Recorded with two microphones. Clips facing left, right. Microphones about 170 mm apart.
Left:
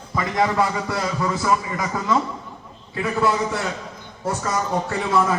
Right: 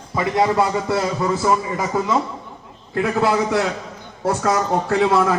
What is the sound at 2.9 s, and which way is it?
Speech, 65° right (ahead or behind).